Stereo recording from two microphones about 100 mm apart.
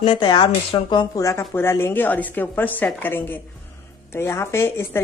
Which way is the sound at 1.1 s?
30° left (ahead or behind).